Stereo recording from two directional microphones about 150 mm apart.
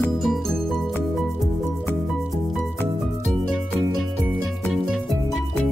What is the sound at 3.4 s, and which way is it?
Music, centre (ahead or behind).